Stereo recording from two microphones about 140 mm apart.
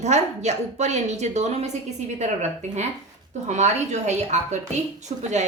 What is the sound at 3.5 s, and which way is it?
A woman's voice, 55° right (ahead or behind).